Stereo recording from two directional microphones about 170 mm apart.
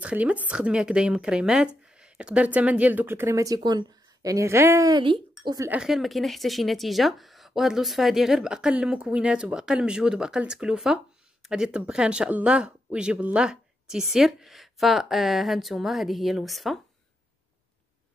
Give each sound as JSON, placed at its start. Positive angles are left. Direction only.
{"t": 0.0, "sound": "speech", "side_deg": -10}
{"t": 5.7, "sound": "speech", "side_deg": -5}